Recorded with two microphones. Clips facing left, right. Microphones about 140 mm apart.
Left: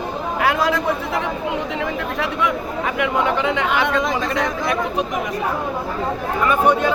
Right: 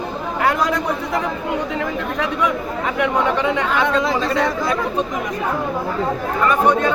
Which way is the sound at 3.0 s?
Centre (ahead or behind).